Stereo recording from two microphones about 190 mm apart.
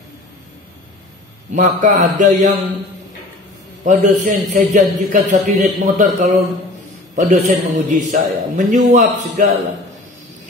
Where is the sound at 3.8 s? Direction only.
40° right (ahead or behind).